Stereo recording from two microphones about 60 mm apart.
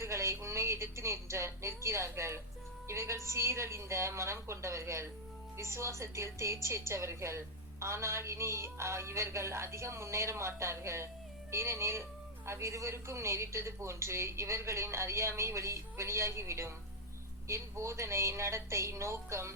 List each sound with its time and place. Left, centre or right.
0.0 s a woman's voice: right